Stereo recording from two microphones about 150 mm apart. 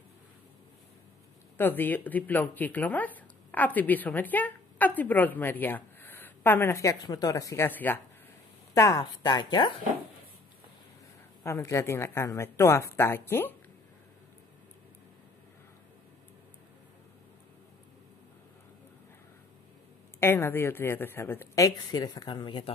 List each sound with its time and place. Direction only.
1.6 s speech: 15° left (ahead or behind); by 9.8 s 30° left (ahead or behind)
11.4 s speech: 20° left (ahead or behind)
20.2 s speech: 15° left (ahead or behind); by 22.7 s 30° left (ahead or behind)